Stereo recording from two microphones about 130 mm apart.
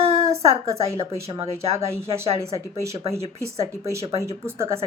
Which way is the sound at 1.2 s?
50° right (ahead or behind).